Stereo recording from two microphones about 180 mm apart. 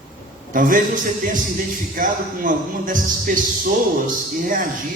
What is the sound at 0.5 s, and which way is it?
Speech, 50° right (ahead or behind).